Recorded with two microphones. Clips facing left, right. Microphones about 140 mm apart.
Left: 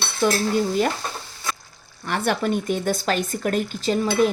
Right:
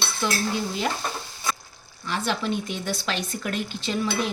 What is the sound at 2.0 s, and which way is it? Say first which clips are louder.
Speech: left 4 dB; 55° left (ahead or behind).